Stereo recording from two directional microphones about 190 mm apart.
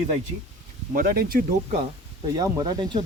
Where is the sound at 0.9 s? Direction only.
50° right (ahead or behind).